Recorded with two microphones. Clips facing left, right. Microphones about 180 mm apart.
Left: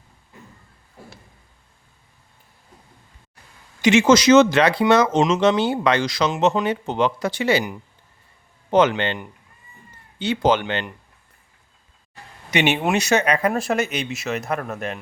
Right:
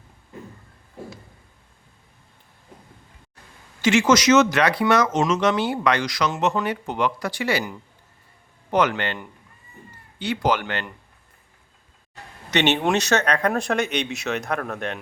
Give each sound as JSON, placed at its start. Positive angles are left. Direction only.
{"t": 3.8, "sound": "speech", "side_deg": 20}
{"t": 12.5, "sound": "speech", "side_deg": 10}